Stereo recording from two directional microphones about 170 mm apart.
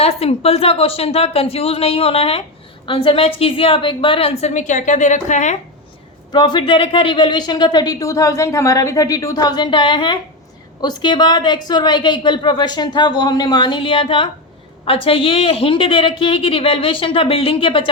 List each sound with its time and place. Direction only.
0.0 s a woman's voice: 35° left (ahead or behind)
6.3 s a woman's voice: 25° left (ahead or behind)